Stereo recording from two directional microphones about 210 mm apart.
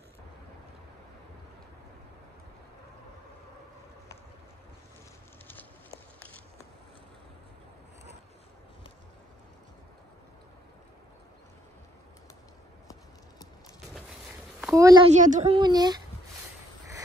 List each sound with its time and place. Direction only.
14.6 s a child's voice: 15° right (ahead or behind)
15.1 s speech: 35° right (ahead or behind); by 16.0 s 20° right (ahead or behind)